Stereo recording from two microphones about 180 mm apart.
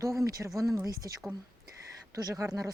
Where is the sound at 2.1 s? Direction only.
20° right (ahead or behind).